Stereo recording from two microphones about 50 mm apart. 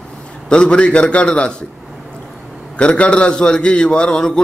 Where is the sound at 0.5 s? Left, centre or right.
Left.